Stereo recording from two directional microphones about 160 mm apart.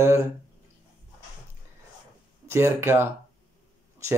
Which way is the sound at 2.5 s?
15° right (ahead or behind).